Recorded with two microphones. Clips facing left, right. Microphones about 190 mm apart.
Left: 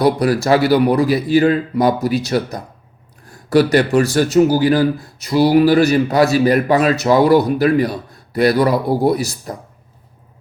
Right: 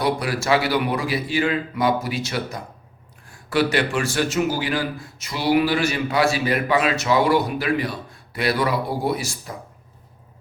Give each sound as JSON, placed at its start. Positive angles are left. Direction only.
{"t": 0.0, "sound": "a man's voice", "side_deg": 40}